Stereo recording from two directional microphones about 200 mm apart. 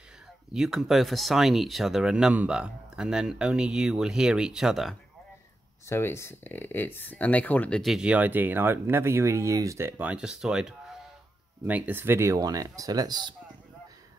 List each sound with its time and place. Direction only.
0.5 s speech: centre (ahead or behind)
5.9 s speech: 15° left (ahead or behind); by 13.3 s 20° right (ahead or behind)